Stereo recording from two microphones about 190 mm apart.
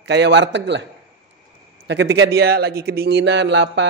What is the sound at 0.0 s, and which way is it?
Speech, 65° right (ahead or behind).